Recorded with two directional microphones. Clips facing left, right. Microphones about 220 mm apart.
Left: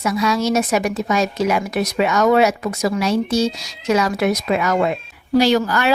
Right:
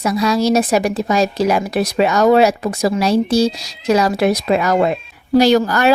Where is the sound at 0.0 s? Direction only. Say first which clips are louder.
Right 3 dB; 35° right (ahead or behind).